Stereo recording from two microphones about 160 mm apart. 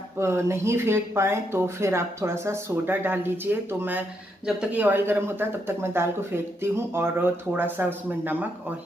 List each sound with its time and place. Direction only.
0.2 s speech: 15° right (ahead or behind)